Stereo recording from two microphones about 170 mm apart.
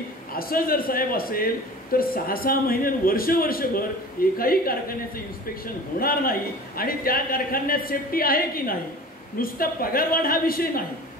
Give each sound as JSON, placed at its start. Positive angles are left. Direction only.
{"t": 0.3, "sound": "a man's voice", "side_deg": 60}
{"t": 5.9, "sound": "a man's voice", "side_deg": 60}